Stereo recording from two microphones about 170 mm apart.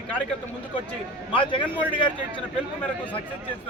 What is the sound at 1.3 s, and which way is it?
Speech, 30° left (ahead or behind).